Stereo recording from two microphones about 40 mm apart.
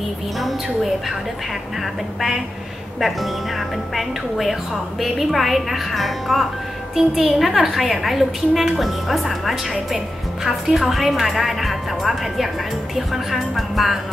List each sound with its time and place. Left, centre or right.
2.1 s a woman's voice: centre
7.0 s a woman's voice: centre